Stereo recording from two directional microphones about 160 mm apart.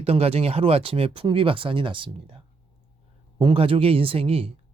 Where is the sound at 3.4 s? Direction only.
35° right (ahead or behind).